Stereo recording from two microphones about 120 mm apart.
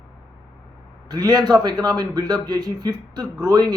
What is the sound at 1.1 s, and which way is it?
Speech, 35° right (ahead or behind).